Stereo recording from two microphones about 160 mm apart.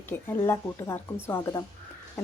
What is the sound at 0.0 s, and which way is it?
Speech, 15° left (ahead or behind).